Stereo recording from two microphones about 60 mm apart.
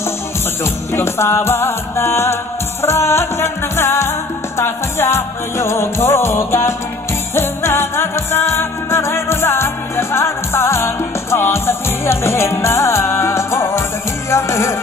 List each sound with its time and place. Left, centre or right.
0.9 s music: left